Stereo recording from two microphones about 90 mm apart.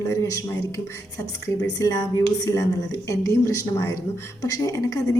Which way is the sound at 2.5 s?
30° left (ahead or behind).